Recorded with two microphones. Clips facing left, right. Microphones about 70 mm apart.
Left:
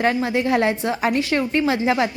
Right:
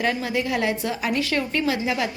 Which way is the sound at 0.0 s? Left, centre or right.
Left.